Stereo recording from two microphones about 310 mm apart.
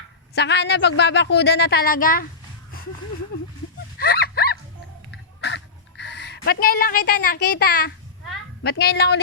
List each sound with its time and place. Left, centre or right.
0.3 s a woman's voice: left
4.0 s a sound: left
8.6 s a woman's voice: left